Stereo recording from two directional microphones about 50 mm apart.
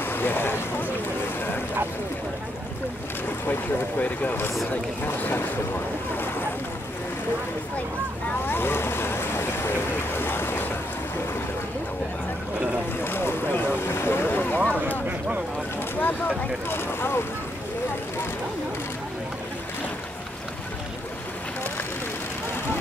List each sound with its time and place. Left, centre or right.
0.0 s boat: left
4.0 s speech: left
5.0 s speech: left
8.5 s speech: left
13.0 s boat: left
14.6 s a sound: left
15.0 s vehicle: right
16.0 s speech: left